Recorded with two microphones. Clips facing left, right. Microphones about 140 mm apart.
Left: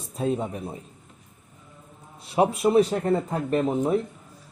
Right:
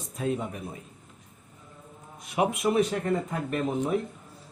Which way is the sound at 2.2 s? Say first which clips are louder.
Left 5 dB; 30° left (ahead or behind).